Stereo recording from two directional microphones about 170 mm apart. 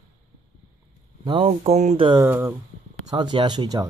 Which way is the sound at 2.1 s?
15° right (ahead or behind).